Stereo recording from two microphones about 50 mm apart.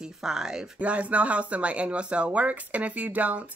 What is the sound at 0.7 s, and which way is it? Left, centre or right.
Speech, right.